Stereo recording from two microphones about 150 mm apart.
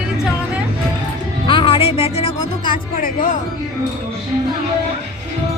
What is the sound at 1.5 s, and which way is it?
Speech, 30° left (ahead or behind).